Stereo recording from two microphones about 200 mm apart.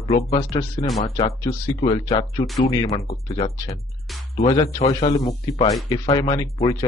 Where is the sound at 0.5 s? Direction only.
25° left (ahead or behind).